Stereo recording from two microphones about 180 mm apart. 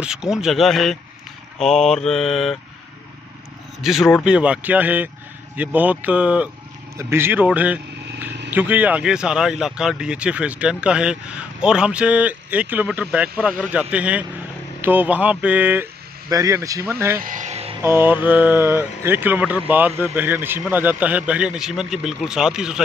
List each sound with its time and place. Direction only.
0.0 s speech: 5° right (ahead or behind)
3.8 s speech: centre (ahead or behind)
17.2 s vehicle: 45° right (ahead or behind)
17.8 s speech: 10° right (ahead or behind)